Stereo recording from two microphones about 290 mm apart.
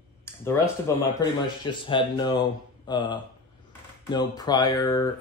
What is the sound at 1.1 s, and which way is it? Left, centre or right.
Speech, centre.